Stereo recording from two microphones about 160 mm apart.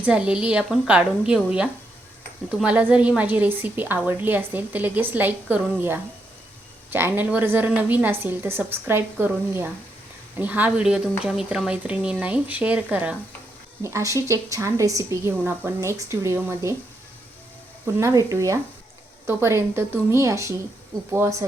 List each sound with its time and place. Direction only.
0.0 s a woman's voice: 5° right (ahead or behind)
13.8 s a woman's voice: 20° right (ahead or behind)
17.8 s a woman's voice: 20° right (ahead or behind)